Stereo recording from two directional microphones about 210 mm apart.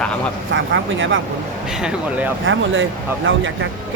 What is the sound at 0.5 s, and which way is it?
Speech, 65° right (ahead or behind).